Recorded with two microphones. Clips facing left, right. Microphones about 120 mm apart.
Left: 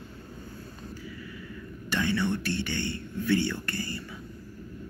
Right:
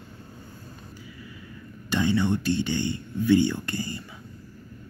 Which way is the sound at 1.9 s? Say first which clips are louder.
Right 4 dB; 20° right (ahead or behind).